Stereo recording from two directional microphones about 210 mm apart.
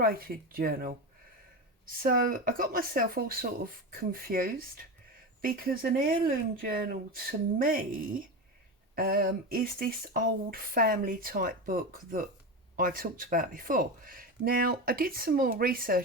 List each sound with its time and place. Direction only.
0.0 s speech: 45° right (ahead or behind)
2.0 s speech: 45° right (ahead or behind)
9.0 s speech: 45° right (ahead or behind)